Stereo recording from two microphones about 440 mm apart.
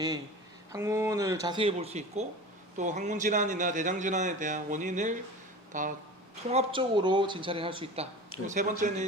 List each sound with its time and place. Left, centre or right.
0.7 s a man's voice: centre